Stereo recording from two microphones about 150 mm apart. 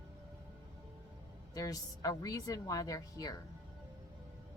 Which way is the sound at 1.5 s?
25° left (ahead or behind).